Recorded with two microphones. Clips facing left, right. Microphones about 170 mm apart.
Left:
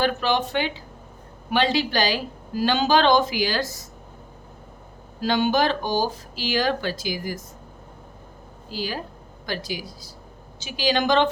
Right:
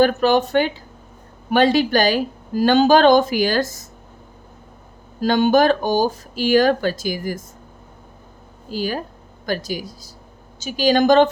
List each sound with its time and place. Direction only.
0.0 s a woman's voice: 45° right (ahead or behind)
5.2 s a woman's voice: 45° right (ahead or behind)
8.7 s a woman's voice: 45° right (ahead or behind)